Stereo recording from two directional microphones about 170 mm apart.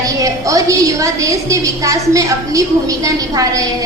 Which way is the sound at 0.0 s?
20° right (ahead or behind).